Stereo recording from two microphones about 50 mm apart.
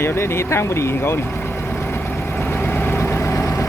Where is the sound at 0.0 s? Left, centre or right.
Left.